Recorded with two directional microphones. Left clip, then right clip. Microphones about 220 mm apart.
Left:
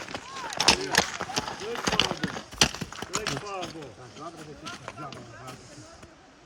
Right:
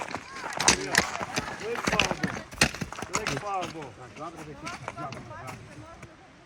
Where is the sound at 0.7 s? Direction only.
25° left (ahead or behind); by 3.5 s 10° left (ahead or behind).